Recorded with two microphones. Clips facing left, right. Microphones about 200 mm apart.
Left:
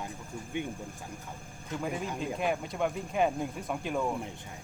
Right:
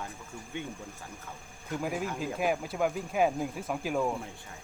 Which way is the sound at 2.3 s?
5° right (ahead or behind).